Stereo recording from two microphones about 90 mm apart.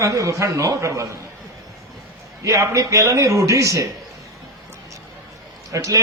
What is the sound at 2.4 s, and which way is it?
Speech, 35° right (ahead or behind).